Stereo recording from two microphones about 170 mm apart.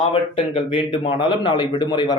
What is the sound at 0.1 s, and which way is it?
Speech, 30° left (ahead or behind).